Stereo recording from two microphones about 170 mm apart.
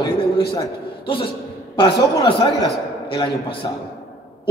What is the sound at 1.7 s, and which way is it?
Speech, 25° left (ahead or behind).